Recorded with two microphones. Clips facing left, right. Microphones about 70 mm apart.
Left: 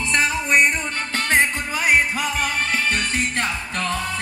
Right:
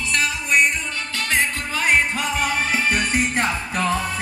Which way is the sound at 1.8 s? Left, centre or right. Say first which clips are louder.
Even; centre.